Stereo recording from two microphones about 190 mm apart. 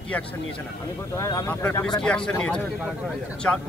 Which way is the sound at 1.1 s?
15° left (ahead or behind).